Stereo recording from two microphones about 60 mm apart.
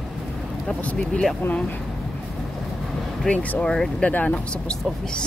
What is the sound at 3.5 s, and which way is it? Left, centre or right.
Speech, centre.